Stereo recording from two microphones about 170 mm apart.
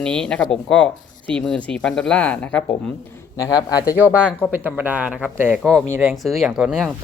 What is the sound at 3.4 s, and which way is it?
Speech, 20° left (ahead or behind).